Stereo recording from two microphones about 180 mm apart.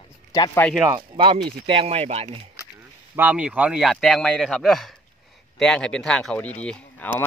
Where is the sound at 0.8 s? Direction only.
25° right (ahead or behind).